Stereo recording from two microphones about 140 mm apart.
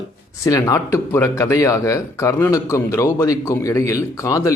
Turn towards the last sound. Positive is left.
turn(degrees=25)  # may be behind; listen again after turning